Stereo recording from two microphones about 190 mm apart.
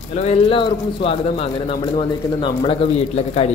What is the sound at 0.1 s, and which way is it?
Speech, 35° left (ahead or behind).